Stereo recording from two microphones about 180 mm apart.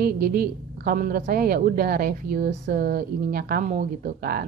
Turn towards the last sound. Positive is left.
turn(degrees=-60)  # may be behind; listen again after turning